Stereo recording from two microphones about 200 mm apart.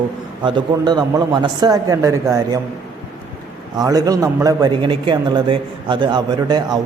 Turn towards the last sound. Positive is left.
turn(degrees=-20)  # may be behind; listen again after turning